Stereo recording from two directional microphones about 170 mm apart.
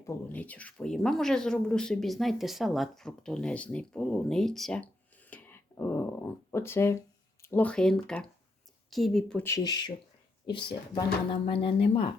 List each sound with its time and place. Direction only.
0.1 s speech: 10° left (ahead or behind)
9.4 s speech: 20° left (ahead or behind)